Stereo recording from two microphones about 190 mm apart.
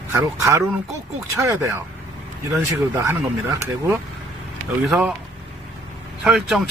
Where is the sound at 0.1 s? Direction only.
15° right (ahead or behind).